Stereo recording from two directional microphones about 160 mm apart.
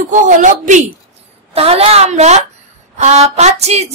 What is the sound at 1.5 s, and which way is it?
A woman's voice, 40° right (ahead or behind).